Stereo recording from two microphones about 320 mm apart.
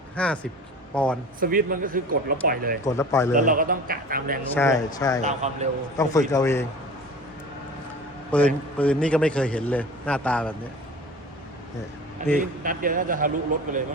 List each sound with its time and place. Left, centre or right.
0.2 s a man's voice: centre
1.4 s speech: right
2.8 s a man's voice: centre
3.3 s speech: right
4.5 s a man's voice: centre
5.2 s speech: right
6.0 s a man's voice: centre
8.3 s a man's voice: centre
12.4 s speech: right